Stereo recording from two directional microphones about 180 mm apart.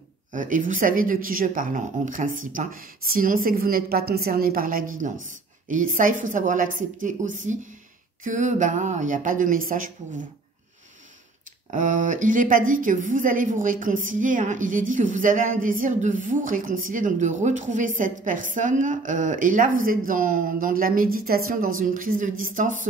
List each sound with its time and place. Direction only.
0.3 s a woman's voice: 45° right (ahead or behind)
11.7 s a woman's voice: 45° right (ahead or behind)